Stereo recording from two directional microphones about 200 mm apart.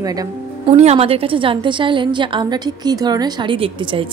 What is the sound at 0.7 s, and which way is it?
A woman's voice, 35° right (ahead or behind).